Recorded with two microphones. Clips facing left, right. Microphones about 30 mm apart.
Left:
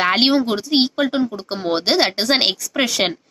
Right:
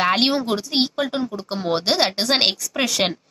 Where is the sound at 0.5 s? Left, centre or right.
Centre.